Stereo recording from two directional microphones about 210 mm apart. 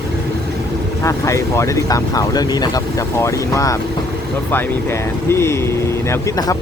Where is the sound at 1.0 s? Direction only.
15° left (ahead or behind).